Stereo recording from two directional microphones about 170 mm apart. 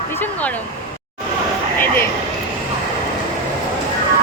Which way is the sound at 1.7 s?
15° left (ahead or behind).